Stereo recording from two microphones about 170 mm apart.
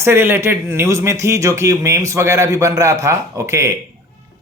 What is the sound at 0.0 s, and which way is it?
Speech, 15° right (ahead or behind).